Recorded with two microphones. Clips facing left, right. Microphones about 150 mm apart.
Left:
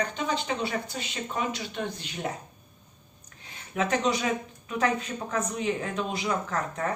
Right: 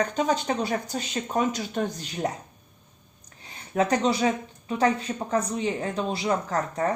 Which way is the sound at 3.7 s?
35° right (ahead or behind).